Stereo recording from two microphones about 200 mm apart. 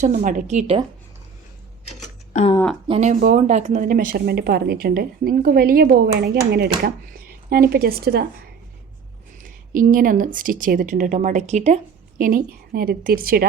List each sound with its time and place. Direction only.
0.0 s a woman's voice: 35° right (ahead or behind)
2.3 s speech: 30° left (ahead or behind)
2.8 s a woman's voice: 30° right (ahead or behind); by 8.2 s 50° right (ahead or behind)
9.4 s a woman's voice: 45° right (ahead or behind)